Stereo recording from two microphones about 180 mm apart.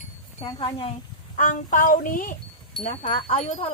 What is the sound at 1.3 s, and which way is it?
Speech, 45° left (ahead or behind).